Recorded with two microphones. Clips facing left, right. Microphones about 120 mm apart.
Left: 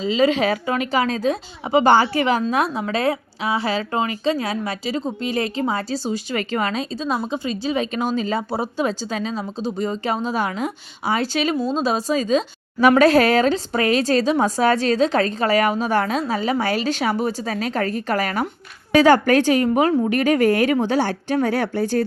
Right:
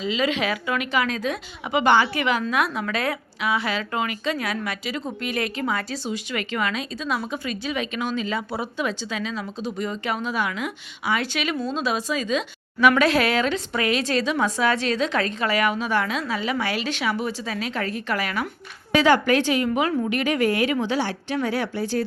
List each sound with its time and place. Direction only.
0.0 s a woman's voice: 35° left (ahead or behind)